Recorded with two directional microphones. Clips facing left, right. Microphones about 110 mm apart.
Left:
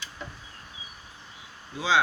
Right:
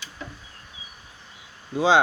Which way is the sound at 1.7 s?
55° right (ahead or behind).